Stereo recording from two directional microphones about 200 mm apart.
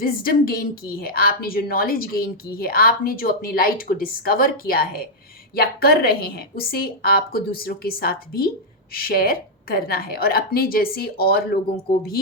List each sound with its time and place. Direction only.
0.0 s a woman's voice: 45° left (ahead or behind)